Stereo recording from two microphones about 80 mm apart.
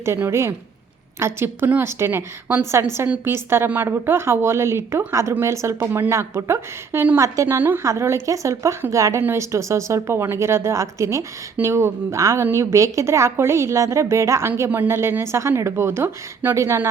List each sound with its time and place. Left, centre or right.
0.3 s a woman's voice: right
2.8 s a woman's voice: right
3.2 s a woman's voice: right
7.8 s a woman's voice: right